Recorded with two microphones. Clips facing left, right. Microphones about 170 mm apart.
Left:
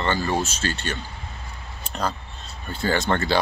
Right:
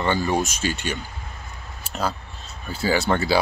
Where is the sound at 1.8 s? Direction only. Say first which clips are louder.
Right 1 dB; 5° right (ahead or behind).